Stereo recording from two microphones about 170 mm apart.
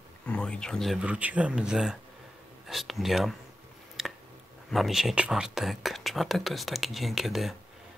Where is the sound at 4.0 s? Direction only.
Centre (ahead or behind).